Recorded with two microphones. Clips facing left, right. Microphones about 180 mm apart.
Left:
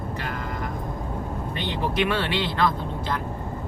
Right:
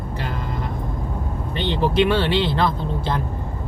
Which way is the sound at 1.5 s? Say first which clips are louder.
Right 7 dB; 30° right (ahead or behind).